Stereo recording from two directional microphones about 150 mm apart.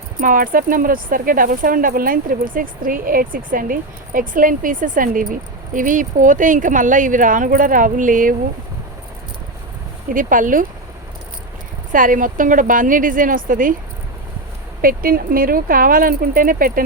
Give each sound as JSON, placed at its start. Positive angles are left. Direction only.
{"t": 0.2, "sound": "speech", "side_deg": -65}
{"t": 10.1, "sound": "speech", "side_deg": -65}
{"t": 11.9, "sound": "speech", "side_deg": -65}
{"t": 14.8, "sound": "speech", "side_deg": -75}